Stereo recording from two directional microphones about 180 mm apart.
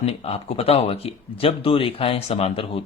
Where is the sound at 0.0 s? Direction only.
35° left (ahead or behind).